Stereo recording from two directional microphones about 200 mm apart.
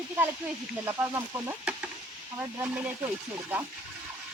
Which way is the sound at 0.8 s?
15° right (ahead or behind).